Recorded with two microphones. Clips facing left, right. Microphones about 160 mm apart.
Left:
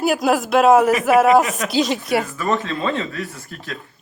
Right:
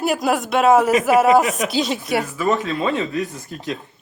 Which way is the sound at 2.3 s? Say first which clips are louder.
Right 2 dB; 10° right (ahead or behind).